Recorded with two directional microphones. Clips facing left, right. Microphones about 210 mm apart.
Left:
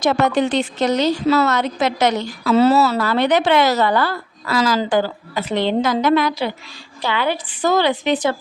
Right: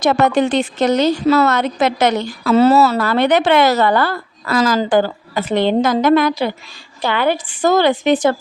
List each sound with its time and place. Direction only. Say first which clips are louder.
0.0 s a woman's voice: right 3 dB; 50° right (ahead or behind)